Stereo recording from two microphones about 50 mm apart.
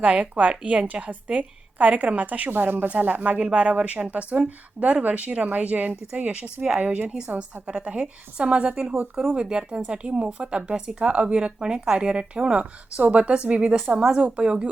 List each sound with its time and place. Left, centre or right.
0.0 s speech: right
2.5 s speech: right